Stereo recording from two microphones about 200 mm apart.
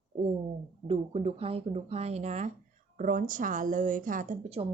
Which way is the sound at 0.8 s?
30° right (ahead or behind).